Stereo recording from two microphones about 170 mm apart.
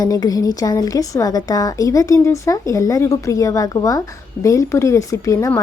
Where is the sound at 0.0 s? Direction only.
20° left (ahead or behind).